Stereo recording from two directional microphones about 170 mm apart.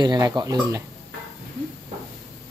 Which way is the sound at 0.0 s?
25° right (ahead or behind).